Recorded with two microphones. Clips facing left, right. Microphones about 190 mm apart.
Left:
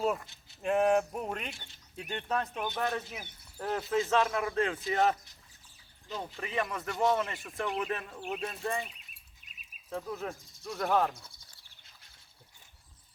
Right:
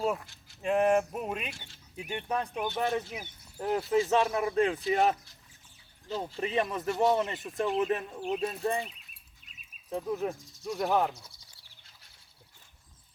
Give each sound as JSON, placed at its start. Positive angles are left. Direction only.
{"t": 0.0, "sound": "speech", "side_deg": 0}
{"t": 9.9, "sound": "speech", "side_deg": -20}